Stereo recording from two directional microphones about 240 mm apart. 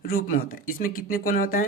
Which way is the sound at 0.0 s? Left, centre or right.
Left.